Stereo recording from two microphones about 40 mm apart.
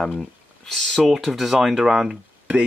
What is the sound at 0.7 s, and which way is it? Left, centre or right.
Speech, centre.